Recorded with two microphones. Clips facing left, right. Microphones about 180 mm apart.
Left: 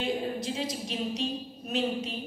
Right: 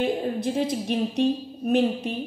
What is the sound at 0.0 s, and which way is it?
A woman's voice, 55° right (ahead or behind).